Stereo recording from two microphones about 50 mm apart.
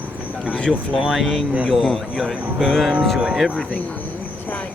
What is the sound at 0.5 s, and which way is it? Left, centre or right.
Speech, centre.